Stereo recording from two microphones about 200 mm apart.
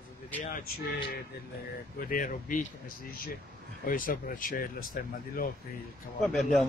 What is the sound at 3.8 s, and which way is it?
Speech, 45° left (ahead or behind).